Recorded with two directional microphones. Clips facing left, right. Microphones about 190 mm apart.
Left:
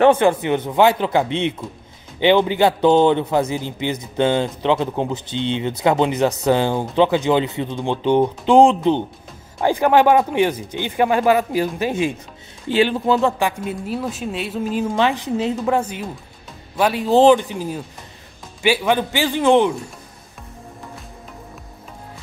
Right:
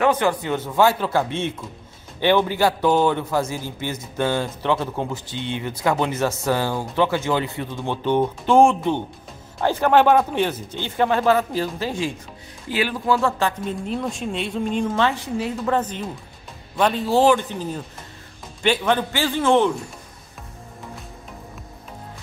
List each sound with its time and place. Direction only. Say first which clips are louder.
0.0 s a man's voice: left 6 dB; 25° left (ahead or behind); by 15.0 s 5° left (ahead or behind)
15.0 s a man's voice: left 3 dB; 15° left (ahead or behind)
15.7 s speech: left 2 dB; 10° left (ahead or behind)